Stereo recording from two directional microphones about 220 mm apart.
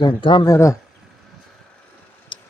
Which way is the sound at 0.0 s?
20° left (ahead or behind).